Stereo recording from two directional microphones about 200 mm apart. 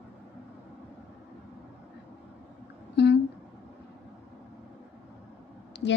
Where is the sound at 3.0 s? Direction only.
55° left (ahead or behind).